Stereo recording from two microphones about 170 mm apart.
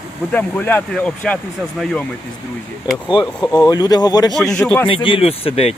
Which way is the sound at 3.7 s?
25° left (ahead or behind).